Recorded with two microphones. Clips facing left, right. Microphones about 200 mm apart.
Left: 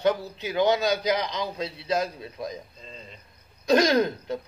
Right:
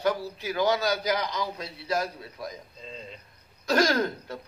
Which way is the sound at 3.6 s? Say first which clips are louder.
Left 4 dB; 20° left (ahead or behind).